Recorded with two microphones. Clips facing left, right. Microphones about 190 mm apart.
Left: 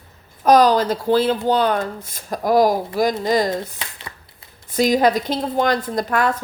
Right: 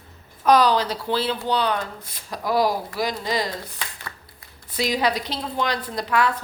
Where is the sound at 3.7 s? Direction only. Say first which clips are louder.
Left 1 dB; 20° left (ahead or behind).